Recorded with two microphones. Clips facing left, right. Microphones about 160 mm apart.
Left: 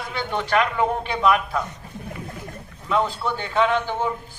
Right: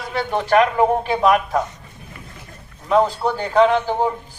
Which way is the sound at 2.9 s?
40° right (ahead or behind).